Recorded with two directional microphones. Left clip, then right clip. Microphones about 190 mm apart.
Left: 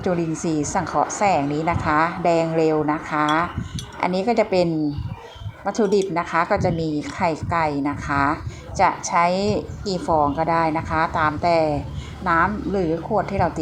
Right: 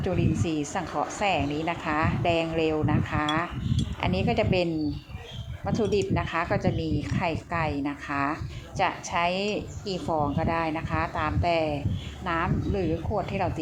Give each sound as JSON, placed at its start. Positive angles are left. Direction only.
{"t": 0.0, "sound": "a woman's voice", "side_deg": 25}